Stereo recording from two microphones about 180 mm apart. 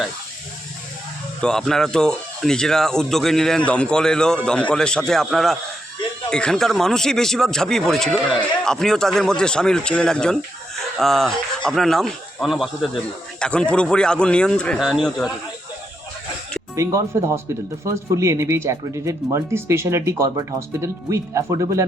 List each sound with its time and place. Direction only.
1.4 s speech: 5° left (ahead or behind)
16.7 s speech: 15° right (ahead or behind)